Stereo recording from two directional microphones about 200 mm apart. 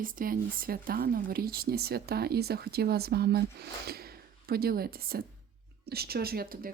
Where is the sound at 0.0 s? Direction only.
45° right (ahead or behind).